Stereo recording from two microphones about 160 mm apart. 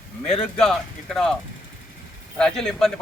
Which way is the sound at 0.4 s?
5° left (ahead or behind).